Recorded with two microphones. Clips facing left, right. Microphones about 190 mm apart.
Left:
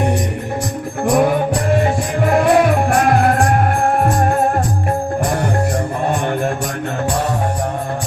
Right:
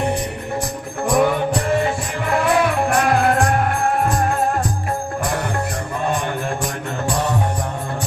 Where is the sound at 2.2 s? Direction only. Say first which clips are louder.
Left 5 dB; 40° left (ahead or behind).